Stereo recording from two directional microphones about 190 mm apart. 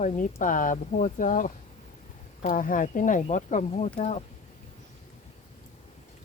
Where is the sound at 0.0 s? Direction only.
40° left (ahead or behind).